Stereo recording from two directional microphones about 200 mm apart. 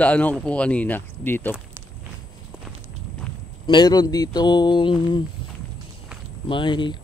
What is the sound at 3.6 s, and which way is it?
Speech, 20° left (ahead or behind).